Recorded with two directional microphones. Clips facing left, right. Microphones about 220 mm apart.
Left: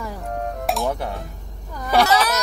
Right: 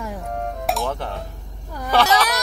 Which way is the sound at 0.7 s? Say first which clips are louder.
Even; centre (ahead or behind).